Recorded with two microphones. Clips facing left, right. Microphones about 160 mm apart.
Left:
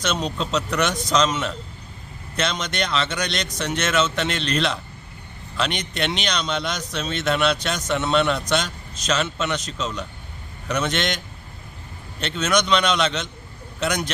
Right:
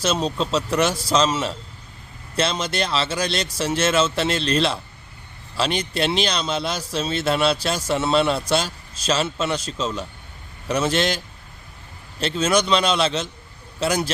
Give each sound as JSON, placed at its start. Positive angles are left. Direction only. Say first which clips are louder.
{"t": 0.0, "sound": "a man's voice", "louder": "right 3 dB", "side_deg": -30}
{"t": 12.2, "sound": "a man's voice", "louder": "right 2 dB", "side_deg": -30}